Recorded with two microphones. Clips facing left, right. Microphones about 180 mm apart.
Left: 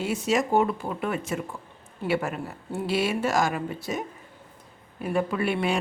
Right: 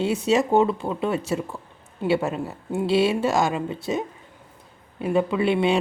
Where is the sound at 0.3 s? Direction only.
25° right (ahead or behind).